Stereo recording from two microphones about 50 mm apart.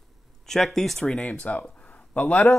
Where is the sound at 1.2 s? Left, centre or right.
Left.